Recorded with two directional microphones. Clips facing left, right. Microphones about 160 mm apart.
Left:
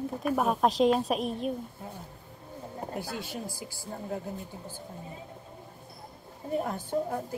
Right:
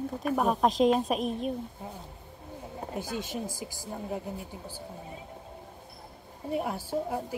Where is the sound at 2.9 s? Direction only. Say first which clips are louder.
Right 3 dB; 20° right (ahead or behind).